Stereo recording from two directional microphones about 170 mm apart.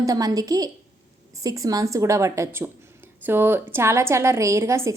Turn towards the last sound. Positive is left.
turn(degrees=-15)  # may be behind; listen again after turning